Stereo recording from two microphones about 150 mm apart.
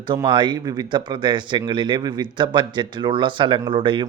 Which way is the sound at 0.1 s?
30° right (ahead or behind).